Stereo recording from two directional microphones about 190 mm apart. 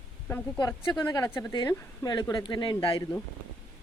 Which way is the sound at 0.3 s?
10° left (ahead or behind).